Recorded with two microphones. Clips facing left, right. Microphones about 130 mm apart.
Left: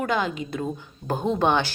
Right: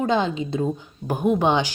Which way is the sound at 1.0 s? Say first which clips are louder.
Right 3 dB; 10° right (ahead or behind).